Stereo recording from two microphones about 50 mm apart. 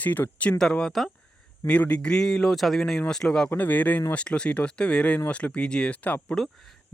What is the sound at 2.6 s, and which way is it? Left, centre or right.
Speech, centre.